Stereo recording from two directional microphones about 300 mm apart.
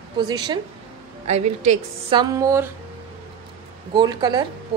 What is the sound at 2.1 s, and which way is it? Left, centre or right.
Speech, centre.